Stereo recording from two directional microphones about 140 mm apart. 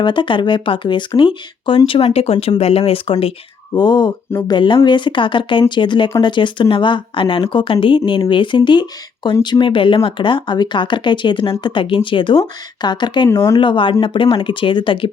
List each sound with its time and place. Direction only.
0.0 s speech: 35° left (ahead or behind)
3.8 s speech: 30° left (ahead or behind)
13.3 s speech: 20° left (ahead or behind)
13.6 s speech: 35° left (ahead or behind)